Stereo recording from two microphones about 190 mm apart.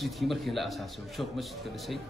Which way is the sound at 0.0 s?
Centre (ahead or behind).